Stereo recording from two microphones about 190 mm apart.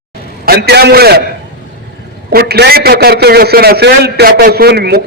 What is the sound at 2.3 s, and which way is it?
A man's voice, 55° right (ahead or behind).